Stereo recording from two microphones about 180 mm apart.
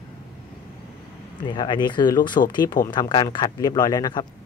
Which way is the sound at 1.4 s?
25° left (ahead or behind).